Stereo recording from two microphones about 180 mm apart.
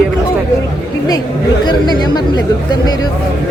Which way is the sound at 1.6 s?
25° left (ahead or behind).